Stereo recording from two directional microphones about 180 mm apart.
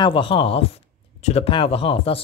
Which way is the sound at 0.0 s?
30° left (ahead or behind).